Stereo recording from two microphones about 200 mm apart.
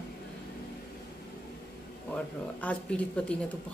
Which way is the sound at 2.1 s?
5° left (ahead or behind).